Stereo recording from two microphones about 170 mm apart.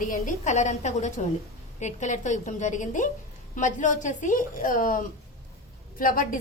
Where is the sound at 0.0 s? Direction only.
50° left (ahead or behind).